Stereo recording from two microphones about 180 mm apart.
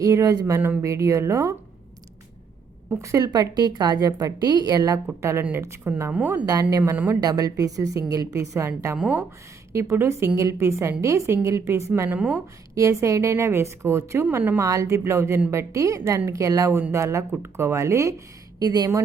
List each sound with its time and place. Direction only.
0.0 s a woman's voice: 20° right (ahead or behind)
2.9 s a woman's voice: 15° right (ahead or behind)
6.4 s a woman's voice: 20° right (ahead or behind)